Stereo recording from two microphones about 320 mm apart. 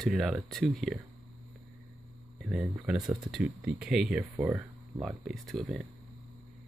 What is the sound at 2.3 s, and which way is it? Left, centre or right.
Speech, centre.